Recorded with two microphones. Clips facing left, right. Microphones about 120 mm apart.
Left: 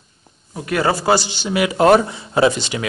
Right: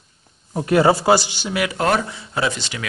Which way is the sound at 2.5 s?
15° left (ahead or behind).